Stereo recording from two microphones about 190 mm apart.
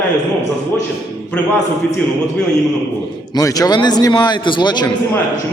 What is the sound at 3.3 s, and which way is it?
A man's voice, 20° left (ahead or behind).